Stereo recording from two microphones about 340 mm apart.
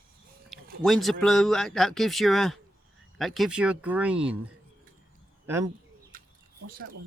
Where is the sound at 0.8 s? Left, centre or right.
Centre.